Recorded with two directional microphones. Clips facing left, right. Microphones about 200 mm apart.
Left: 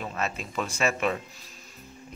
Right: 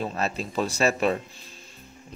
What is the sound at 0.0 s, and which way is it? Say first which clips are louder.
A man's voice: right 4 dB; 35° right (ahead or behind).